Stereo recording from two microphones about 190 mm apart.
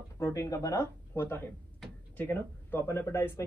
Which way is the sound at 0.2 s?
15° left (ahead or behind).